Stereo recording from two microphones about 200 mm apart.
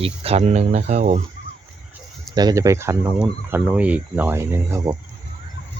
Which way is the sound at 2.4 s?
20° right (ahead or behind).